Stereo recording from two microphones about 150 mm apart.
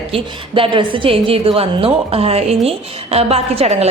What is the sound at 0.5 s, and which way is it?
A woman's voice, 35° right (ahead or behind).